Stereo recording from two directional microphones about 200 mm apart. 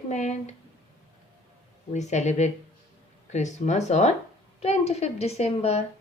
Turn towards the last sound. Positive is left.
turn(degrees=30)  # may be behind; listen again after turning